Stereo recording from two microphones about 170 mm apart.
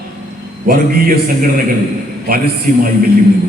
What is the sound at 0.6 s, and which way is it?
Speech, 60° right (ahead or behind).